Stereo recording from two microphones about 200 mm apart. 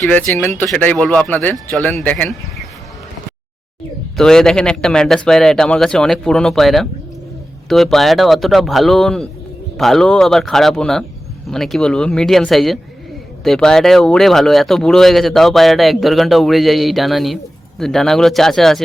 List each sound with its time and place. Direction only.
0.0 s speech: 5° left (ahead or behind)
4.2 s speech: 5° left (ahead or behind)